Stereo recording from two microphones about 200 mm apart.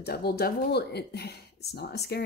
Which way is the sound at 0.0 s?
50° left (ahead or behind).